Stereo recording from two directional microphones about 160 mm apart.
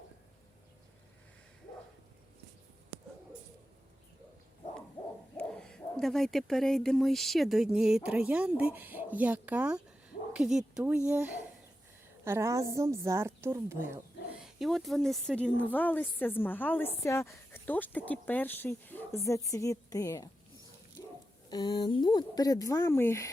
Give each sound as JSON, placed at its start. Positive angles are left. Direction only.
{"t": 5.4, "sound": "a woman's voice", "side_deg": 5}
{"t": 14.3, "sound": "speech", "side_deg": 0}
{"t": 21.5, "sound": "speech", "side_deg": 25}